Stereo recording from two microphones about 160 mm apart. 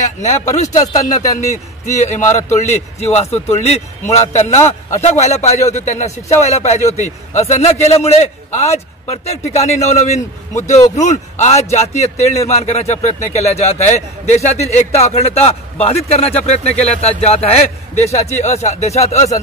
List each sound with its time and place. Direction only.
0.0 s a man's voice: 45° left (ahead or behind)